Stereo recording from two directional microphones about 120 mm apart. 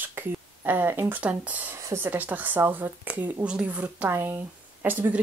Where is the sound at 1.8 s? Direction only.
25° right (ahead or behind).